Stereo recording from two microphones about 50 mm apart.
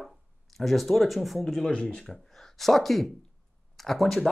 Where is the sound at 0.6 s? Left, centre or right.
Centre.